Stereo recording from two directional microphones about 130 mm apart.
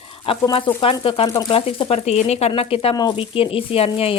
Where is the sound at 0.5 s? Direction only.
45° left (ahead or behind).